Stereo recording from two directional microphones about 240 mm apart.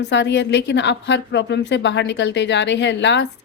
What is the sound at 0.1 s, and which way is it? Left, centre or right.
Speech, left.